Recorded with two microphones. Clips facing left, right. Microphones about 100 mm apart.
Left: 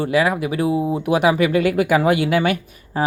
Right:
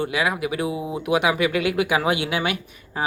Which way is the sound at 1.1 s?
40° left (ahead or behind).